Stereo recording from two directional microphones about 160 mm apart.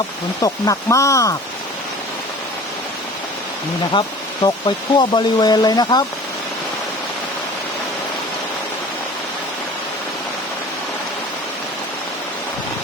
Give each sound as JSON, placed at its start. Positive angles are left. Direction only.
{"t": 0.4, "sound": "speech", "side_deg": 20}
{"t": 3.9, "sound": "speech", "side_deg": 30}